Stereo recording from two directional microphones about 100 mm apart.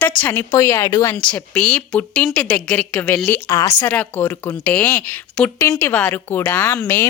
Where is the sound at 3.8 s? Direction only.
20° left (ahead or behind).